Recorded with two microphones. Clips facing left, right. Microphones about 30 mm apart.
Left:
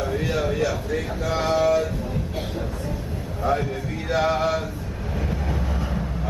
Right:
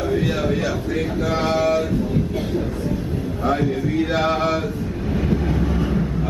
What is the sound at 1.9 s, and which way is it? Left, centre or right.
Train, centre.